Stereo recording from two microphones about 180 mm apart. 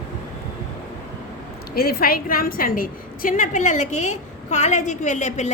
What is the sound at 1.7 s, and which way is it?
A woman's voice, 60° left (ahead or behind).